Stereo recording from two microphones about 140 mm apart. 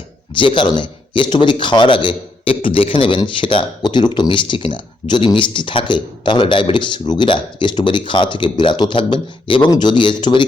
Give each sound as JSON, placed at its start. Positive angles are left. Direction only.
{"t": 0.3, "sound": "speech", "side_deg": 35}